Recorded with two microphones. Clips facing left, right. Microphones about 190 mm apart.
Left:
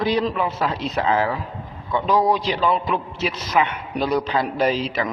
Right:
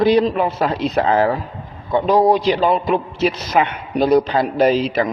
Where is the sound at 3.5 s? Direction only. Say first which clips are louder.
Right 3 dB; 40° right (ahead or behind).